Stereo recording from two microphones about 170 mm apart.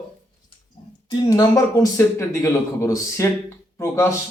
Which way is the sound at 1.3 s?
20° left (ahead or behind).